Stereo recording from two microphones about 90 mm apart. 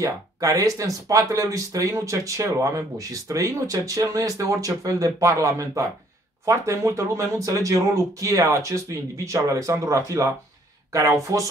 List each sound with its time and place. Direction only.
0.0 s speech: 40° right (ahead or behind)